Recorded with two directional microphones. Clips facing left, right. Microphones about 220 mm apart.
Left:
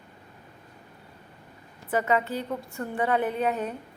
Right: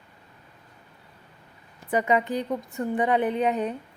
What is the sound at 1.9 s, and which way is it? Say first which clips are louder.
A woman's voice: right 2 dB; 15° right (ahead or behind).